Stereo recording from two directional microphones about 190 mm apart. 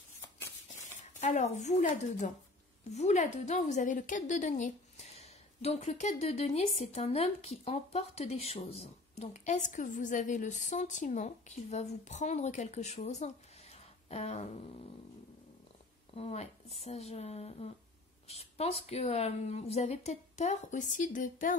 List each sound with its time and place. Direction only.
1.0 s a woman's voice: 35° left (ahead or behind)
16.2 s a woman's voice: 35° left (ahead or behind)